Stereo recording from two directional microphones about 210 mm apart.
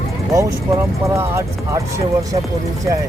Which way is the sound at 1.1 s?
10° right (ahead or behind).